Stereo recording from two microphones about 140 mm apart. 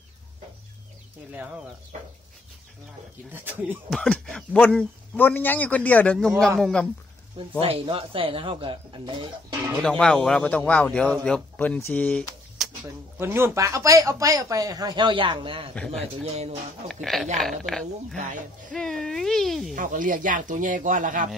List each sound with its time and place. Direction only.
1.3 s speech: 10° right (ahead or behind)
3.3 s speech: 15° right (ahead or behind)
3.9 s a man's voice: 5° left (ahead or behind)
7.6 s speech: 40° right (ahead or behind)
9.8 s a man's voice: 5° left (ahead or behind)
12.8 s speech: 15° right (ahead or behind); by 15.7 s 40° right (ahead or behind)
15.7 s speech: 5° left (ahead or behind)
16.3 s speech: 50° right (ahead or behind)
16.8 s speech: centre (ahead or behind)
19.7 s speech: 70° right (ahead or behind)